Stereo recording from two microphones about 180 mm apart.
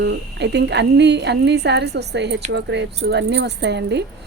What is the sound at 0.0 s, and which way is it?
A woman's voice, 75° right (ahead or behind).